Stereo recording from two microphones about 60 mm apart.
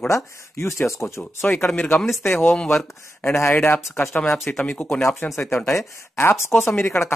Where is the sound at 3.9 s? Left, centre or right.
Left.